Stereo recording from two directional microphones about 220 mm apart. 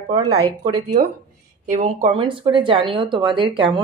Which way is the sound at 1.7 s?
30° right (ahead or behind).